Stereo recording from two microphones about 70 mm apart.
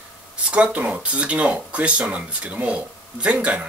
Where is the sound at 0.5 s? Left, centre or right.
Centre.